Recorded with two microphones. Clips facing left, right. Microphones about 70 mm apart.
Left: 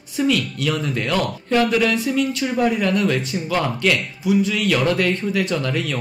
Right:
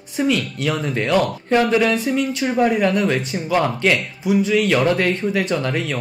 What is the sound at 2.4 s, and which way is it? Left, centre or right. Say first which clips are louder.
Speech: right 2 dB; right.